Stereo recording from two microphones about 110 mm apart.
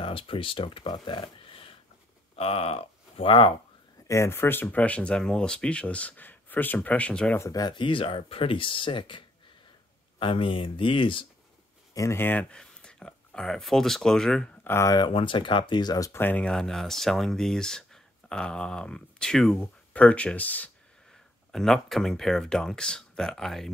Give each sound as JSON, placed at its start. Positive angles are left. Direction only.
{"t": 0.0, "sound": "speech", "side_deg": 55}
{"t": 4.1, "sound": "speech", "side_deg": 25}
{"t": 7.3, "sound": "speech", "side_deg": 30}
{"t": 11.9, "sound": "speech", "side_deg": 25}
{"t": 14.6, "sound": "speech", "side_deg": 25}
{"t": 15.0, "sound": "speech", "side_deg": 50}
{"t": 16.1, "sound": "speech", "side_deg": 20}
{"t": 21.5, "sound": "speech", "side_deg": 5}